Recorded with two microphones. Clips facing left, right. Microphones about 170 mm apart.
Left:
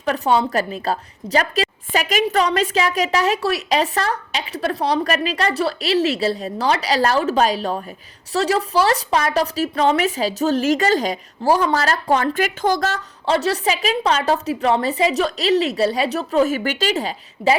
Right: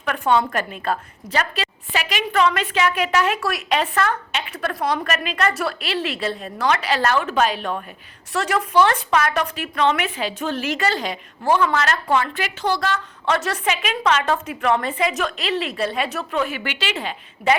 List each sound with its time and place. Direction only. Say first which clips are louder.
0.0 s a woman's voice: left 1 dB; 35° left (ahead or behind)
13.2 s a woman's voice: left 4 dB; 30° left (ahead or behind)